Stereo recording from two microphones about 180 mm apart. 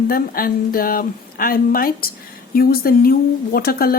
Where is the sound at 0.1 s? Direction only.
55° left (ahead or behind).